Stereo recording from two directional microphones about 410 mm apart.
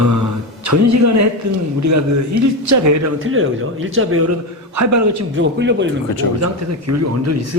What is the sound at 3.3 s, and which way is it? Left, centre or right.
Speech, right.